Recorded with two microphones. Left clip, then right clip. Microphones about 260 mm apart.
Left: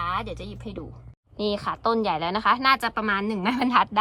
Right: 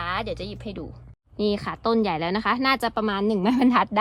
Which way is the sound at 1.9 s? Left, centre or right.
Right.